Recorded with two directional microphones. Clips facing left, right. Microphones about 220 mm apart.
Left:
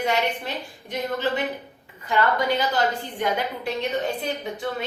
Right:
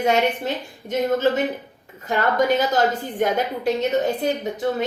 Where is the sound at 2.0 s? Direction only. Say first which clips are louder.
Right 3 dB; 45° right (ahead or behind).